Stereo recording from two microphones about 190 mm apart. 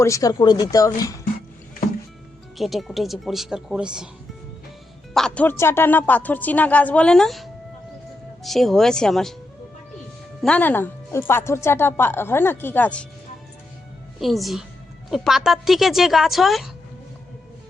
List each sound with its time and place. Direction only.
0.0 s speech: 15° left (ahead or behind)
2.6 s speech: centre (ahead or behind)
5.1 s speech: 5° left (ahead or behind)
10.4 s speech: 5° left (ahead or behind)
14.2 s speech: centre (ahead or behind)